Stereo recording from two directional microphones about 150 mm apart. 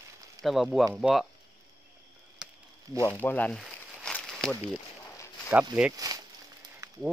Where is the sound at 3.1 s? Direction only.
10° left (ahead or behind).